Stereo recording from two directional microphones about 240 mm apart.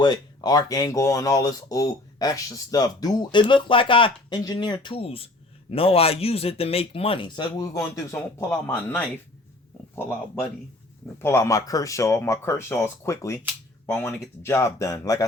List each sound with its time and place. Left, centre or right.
0.0 s speech: centre